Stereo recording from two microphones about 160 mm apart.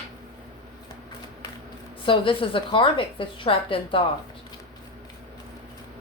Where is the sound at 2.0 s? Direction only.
30° left (ahead or behind).